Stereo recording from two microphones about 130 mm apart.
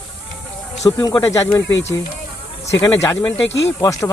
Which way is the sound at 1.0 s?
25° left (ahead or behind).